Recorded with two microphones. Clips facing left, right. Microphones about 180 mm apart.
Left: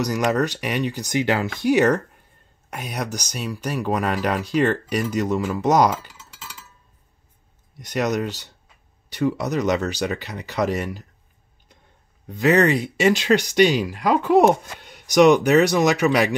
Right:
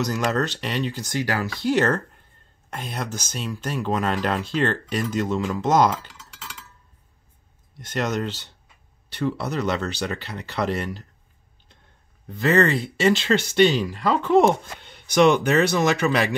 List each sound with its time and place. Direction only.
0.0 s speech: 15° left (ahead or behind)
7.7 s speech: 15° left (ahead or behind)
12.3 s speech: 15° left (ahead or behind)